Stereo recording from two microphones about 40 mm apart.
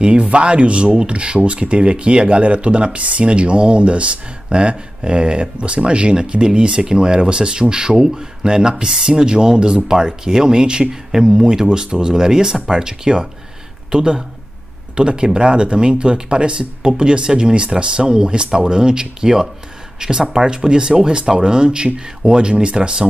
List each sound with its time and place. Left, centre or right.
0.0 s speech: right